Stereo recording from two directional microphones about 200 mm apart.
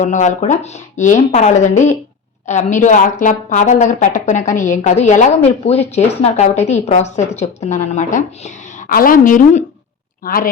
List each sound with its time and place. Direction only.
0.0 s a woman's voice: 35° left (ahead or behind)